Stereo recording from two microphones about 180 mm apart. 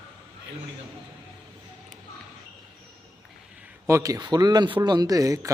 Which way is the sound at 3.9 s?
20° right (ahead or behind).